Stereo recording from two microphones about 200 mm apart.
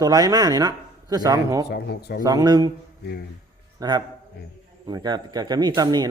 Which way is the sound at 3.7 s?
20° right (ahead or behind).